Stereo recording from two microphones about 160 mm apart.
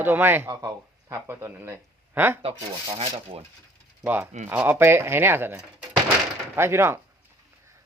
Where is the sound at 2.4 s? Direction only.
35° right (ahead or behind).